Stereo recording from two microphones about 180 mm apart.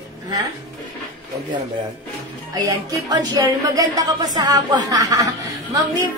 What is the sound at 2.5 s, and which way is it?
Speech, 20° right (ahead or behind).